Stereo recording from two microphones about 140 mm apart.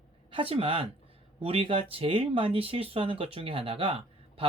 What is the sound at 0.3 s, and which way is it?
Speech, 40° right (ahead or behind).